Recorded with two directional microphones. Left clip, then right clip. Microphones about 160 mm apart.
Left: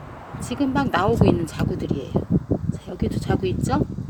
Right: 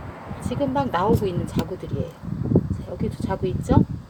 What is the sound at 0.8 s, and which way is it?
Speech, 55° left (ahead or behind).